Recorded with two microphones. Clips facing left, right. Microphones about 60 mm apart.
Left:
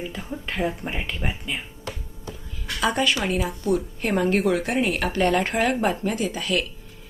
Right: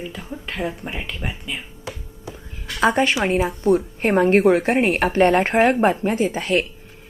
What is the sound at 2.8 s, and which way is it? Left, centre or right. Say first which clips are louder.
A woman's voice: right 5 dB; right.